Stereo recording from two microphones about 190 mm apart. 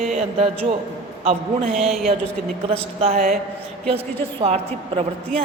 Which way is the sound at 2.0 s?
30° right (ahead or behind).